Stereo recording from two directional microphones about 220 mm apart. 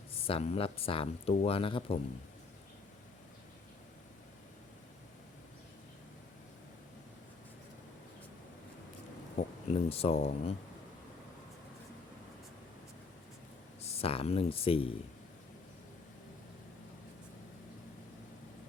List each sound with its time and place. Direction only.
0.2 s speech: 25° left (ahead or behind)
9.4 s speech: 30° left (ahead or behind)
13.8 s speech: 25° left (ahead or behind)